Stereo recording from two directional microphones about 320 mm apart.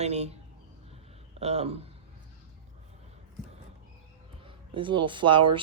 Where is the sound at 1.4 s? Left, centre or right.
Centre.